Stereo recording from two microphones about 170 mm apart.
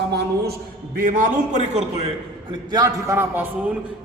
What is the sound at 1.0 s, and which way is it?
Speech, 55° right (ahead or behind).